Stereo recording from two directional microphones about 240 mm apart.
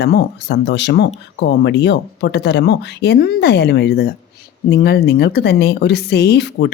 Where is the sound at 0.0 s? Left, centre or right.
Left.